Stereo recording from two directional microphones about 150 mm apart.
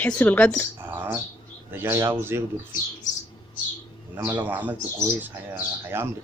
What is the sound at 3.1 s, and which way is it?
Bird, 55° left (ahead or behind).